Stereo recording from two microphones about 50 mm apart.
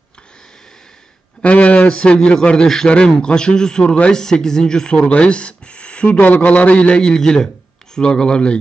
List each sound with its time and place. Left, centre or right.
1.4 s a man's voice: left
4.9 s speech: left
6.1 s a man's voice: left; by 8.5 s centre